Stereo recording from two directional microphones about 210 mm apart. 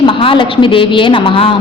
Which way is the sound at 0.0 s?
25° left (ahead or behind).